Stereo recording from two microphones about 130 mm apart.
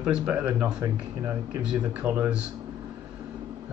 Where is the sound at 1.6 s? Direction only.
10° right (ahead or behind).